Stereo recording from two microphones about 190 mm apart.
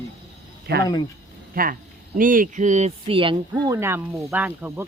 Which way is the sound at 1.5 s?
50° right (ahead or behind).